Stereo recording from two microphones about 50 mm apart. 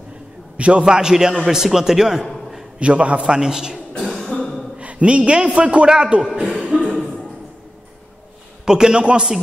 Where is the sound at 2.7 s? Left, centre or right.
Right.